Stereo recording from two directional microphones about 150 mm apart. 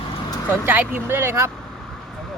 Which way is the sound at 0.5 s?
15° right (ahead or behind).